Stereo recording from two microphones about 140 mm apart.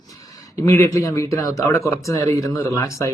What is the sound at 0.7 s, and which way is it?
Speech, 20° left (ahead or behind).